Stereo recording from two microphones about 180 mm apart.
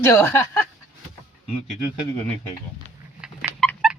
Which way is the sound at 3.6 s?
5° left (ahead or behind).